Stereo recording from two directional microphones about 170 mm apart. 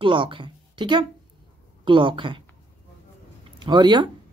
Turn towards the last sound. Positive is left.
turn(degrees=-25)  # may be behind; listen again after turning